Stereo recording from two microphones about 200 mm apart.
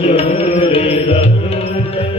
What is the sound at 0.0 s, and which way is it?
Music, 30° left (ahead or behind).